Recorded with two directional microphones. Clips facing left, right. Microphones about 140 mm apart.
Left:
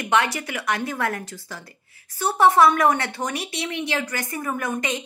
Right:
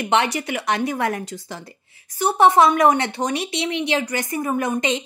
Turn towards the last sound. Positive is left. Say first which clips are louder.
# right 5 dB
turn(degrees=-20)  # may be behind; listen again after turning